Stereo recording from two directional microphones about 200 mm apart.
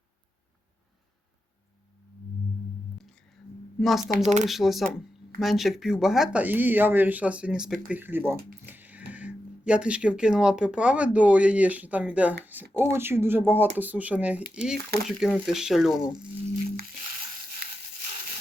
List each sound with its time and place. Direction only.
3.0 s whispering: 5° left (ahead or behind)
3.8 s speech: centre (ahead or behind)
4.1 s speech: 35° right (ahead or behind)
4.4 s speech: centre (ahead or behind)